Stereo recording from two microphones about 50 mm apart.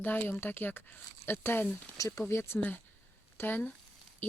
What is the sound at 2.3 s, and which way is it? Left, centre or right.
Speech, left.